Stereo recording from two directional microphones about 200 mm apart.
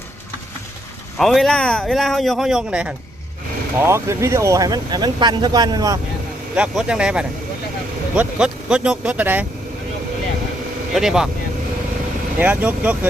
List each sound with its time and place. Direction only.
1.2 s speech: centre (ahead or behind); by 6.0 s 20° right (ahead or behind)
6.6 s speech: 5° right (ahead or behind)
10.9 s speech: centre (ahead or behind)
12.4 s speech: 10° right (ahead or behind)